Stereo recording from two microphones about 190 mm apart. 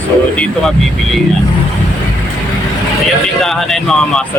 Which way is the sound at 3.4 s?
Centre (ahead or behind).